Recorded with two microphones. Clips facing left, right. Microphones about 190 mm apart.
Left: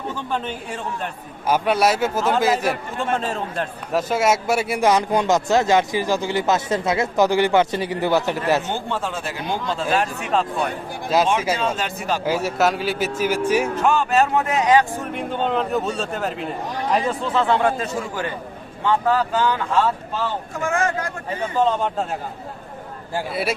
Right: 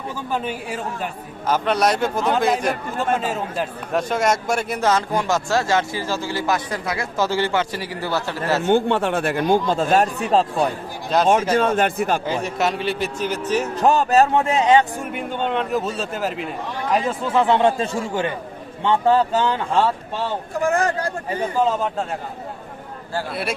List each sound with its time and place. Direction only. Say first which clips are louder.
0.3 s a man's voice: right 5 dB; 5° right (ahead or behind)
1.5 s a man's voice: left 1 dB; 10° left (ahead or behind)
3.2 s a man's voice: right 1 dB; 5° right (ahead or behind)
4.1 s speech: left 2 dB; 5° left (ahead or behind)
8.6 s speech: right 8 dB; 60° right (ahead or behind); by 10.7 s 35° right (ahead or behind)
11.1 s a man's voice: even; 5° left (ahead or behind)
11.5 s speech: right 6 dB; 55° right (ahead or behind)
12.2 s a man's voice: left 2 dB; 5° left (ahead or behind)
13.7 s speech: right 2 dB; 35° right (ahead or behind)
14.9 s a man's voice: left 1 dB; centre (ahead or behind)
17.3 s a man's voice: right 3 dB; 20° right (ahead or behind)
20.6 s speech: right 3 dB; 35° right (ahead or behind)
21.6 s a man's voice: left 2 dB; 5° right (ahead or behind)
23.3 s a man's voice: left 4 dB; centre (ahead or behind)